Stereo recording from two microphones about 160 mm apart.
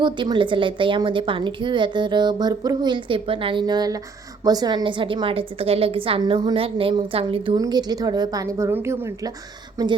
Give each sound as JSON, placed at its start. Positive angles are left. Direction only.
{"t": 0.0, "sound": "a woman's voice", "side_deg": -30}